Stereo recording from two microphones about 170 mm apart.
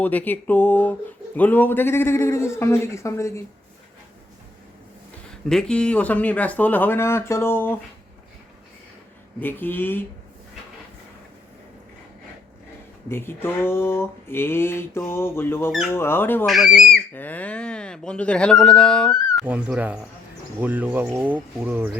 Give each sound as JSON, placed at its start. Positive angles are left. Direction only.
{"t": 0.0, "sound": "speech", "side_deg": 10}
{"t": 5.3, "sound": "speech", "side_deg": 5}
{"t": 9.4, "sound": "speech", "side_deg": 10}
{"t": 13.1, "sound": "speech", "side_deg": 15}
{"t": 16.5, "sound": "speech", "side_deg": 0}
{"t": 19.5, "sound": "speech", "side_deg": -5}